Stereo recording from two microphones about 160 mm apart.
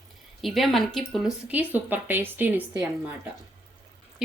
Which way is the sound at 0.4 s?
Centre (ahead or behind).